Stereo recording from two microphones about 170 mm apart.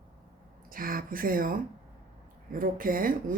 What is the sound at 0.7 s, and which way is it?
Speech, 55° right (ahead or behind).